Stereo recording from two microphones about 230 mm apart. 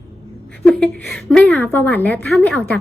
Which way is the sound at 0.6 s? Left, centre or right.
Centre.